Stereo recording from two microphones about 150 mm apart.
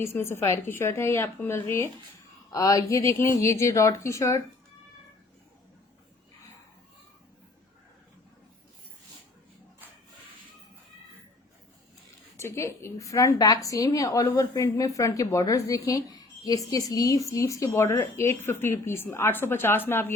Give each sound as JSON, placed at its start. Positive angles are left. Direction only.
{"t": 0.0, "sound": "a woman's voice", "side_deg": 15}
{"t": 12.4, "sound": "a woman's voice", "side_deg": 20}